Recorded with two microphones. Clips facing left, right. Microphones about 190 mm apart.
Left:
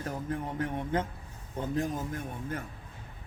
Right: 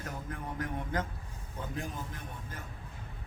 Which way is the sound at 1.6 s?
40° left (ahead or behind).